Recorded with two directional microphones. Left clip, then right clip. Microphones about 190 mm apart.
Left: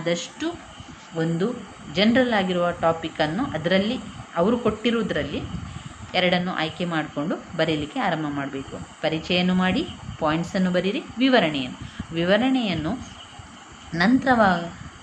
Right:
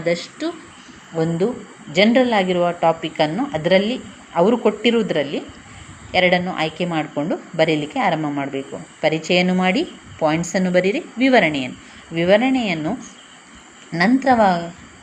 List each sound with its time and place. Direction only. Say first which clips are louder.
0.0 s a woman's voice: right 4 dB; 5° right (ahead or behind)
1.9 s a woman's voice: right 5 dB; 20° right (ahead or behind)
14.0 s a woman's voice: right 4 dB; 10° right (ahead or behind)